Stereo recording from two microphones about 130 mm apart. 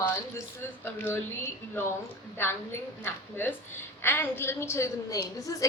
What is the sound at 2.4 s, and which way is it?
A woman's voice, 15° left (ahead or behind).